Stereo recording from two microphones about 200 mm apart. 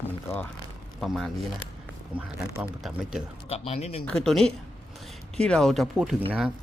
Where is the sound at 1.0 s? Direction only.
Centre (ahead or behind).